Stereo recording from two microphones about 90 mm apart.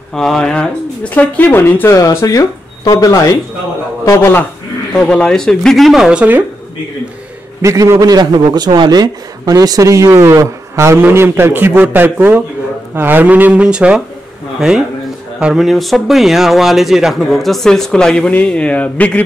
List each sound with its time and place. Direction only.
0.1 s speech: 5° left (ahead or behind); by 2.0 s 25° left (ahead or behind)
2.2 s a man's voice: 40° left (ahead or behind)
4.9 s speech: 10° left (ahead or behind); by 6.2 s 5° right (ahead or behind)
7.6 s a man's voice: 35° right (ahead or behind); by 14.0 s 10° right (ahead or behind)
15.4 s speech: centre (ahead or behind); by 19.2 s 15° left (ahead or behind)